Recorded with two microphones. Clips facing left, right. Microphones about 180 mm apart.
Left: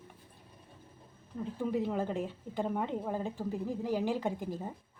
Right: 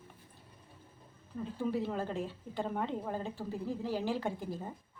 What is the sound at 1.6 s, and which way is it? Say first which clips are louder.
A woman's voice: left 2 dB; 15° left (ahead or behind).